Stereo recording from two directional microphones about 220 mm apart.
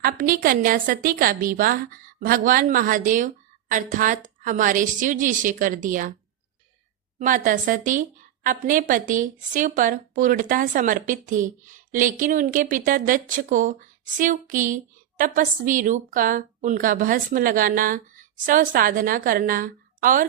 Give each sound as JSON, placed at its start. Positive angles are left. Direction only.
{"t": 0.0, "sound": "a woman's voice", "side_deg": -40}
{"t": 7.2, "sound": "a woman's voice", "side_deg": -35}